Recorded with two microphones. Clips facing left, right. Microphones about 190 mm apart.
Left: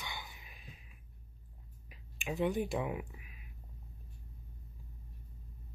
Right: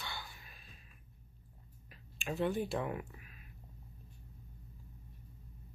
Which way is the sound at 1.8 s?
15° left (ahead or behind).